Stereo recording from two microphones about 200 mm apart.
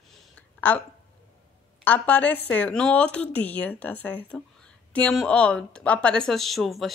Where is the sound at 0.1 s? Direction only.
10° left (ahead or behind).